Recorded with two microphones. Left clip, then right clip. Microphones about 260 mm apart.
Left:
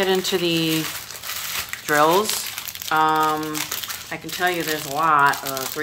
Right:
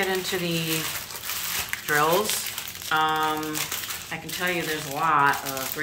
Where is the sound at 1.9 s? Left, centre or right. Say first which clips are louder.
Left 5 dB; left.